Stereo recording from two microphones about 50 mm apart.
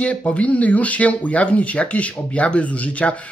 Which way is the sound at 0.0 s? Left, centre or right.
Left.